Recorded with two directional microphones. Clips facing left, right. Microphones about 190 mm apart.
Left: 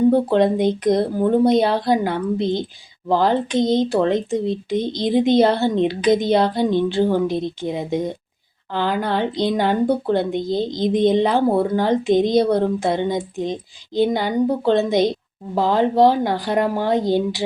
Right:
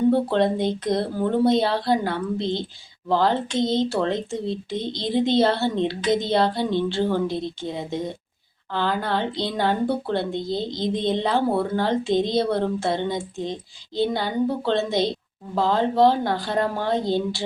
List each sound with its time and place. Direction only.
0.1 s speech: 15° left (ahead or behind)